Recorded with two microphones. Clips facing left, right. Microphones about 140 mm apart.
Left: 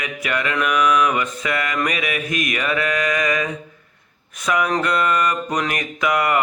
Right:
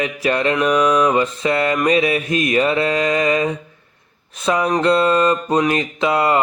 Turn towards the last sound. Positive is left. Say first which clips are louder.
# right 3 dB
turn(degrees=-25)  # may be behind; listen again after turning